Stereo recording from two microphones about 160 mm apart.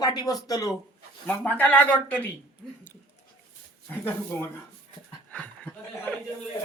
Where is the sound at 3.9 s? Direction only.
10° left (ahead or behind).